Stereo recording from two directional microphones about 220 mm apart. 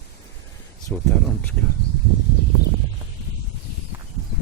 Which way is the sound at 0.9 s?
5° left (ahead or behind).